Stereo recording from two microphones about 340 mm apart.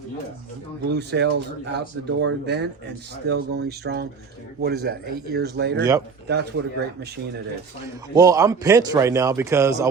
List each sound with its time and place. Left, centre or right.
0.9 s speech: right
8.1 s a man's voice: centre